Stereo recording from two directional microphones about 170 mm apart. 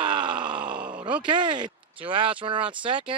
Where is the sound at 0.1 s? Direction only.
30° right (ahead or behind).